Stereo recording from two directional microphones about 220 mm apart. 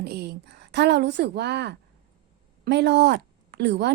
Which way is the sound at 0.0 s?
45° right (ahead or behind).